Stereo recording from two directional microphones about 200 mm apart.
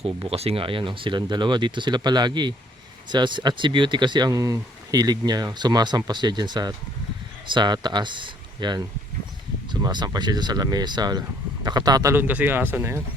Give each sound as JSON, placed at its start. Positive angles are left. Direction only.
{"t": 0.0, "sound": "speech", "side_deg": -30}
{"t": 9.8, "sound": "speech", "side_deg": -20}